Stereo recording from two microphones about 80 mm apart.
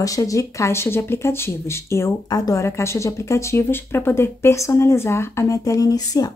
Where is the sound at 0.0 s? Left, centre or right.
Left.